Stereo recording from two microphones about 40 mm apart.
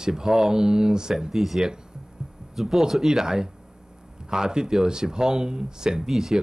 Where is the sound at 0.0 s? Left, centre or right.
Centre.